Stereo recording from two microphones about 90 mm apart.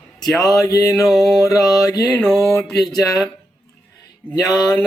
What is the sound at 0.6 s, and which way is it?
Mantra, 40° left (ahead or behind).